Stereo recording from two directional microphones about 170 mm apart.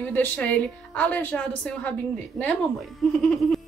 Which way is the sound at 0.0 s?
10° left (ahead or behind).